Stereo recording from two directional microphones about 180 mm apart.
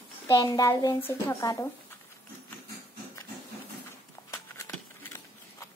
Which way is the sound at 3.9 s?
15° left (ahead or behind).